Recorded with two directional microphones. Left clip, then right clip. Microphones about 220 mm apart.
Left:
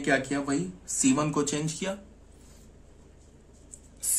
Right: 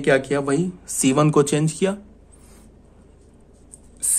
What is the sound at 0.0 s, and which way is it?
Speech, 45° right (ahead or behind).